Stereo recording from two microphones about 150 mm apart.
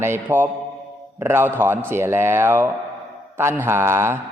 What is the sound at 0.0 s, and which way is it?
A man's voice, 15° right (ahead or behind).